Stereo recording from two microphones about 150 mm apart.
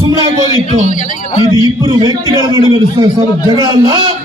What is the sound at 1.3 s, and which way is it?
Speech, 25° left (ahead or behind).